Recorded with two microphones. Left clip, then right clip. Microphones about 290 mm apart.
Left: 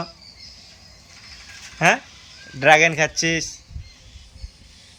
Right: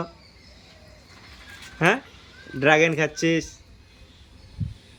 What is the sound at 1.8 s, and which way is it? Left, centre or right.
A man's voice, centre.